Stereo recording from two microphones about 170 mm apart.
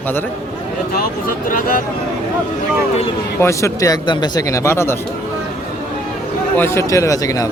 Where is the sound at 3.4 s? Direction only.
15° left (ahead or behind).